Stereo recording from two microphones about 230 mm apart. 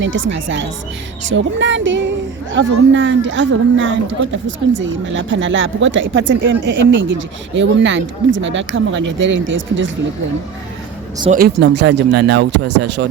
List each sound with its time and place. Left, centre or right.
0.0 s speech: right
11.3 s speech: right